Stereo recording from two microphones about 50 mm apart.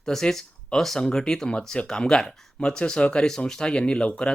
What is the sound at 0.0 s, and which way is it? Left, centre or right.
Speech, centre.